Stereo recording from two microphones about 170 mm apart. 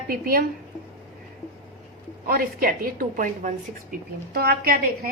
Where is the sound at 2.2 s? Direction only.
60° right (ahead or behind).